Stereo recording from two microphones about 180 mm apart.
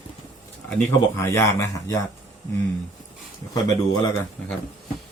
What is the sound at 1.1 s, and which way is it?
Speech, 15° left (ahead or behind).